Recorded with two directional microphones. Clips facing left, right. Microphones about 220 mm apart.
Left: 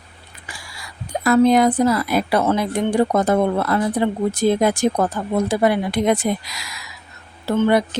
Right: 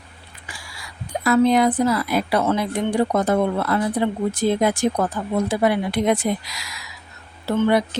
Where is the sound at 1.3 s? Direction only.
45° left (ahead or behind).